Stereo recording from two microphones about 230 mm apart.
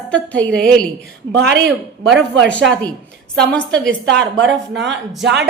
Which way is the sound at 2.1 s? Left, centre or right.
Centre.